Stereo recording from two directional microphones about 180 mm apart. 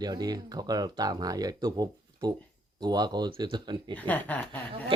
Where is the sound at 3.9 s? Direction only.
10° left (ahead or behind).